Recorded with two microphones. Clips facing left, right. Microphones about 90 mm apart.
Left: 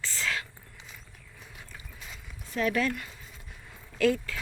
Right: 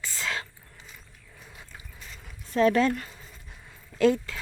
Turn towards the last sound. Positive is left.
turn(degrees=-25)  # may be behind; listen again after turning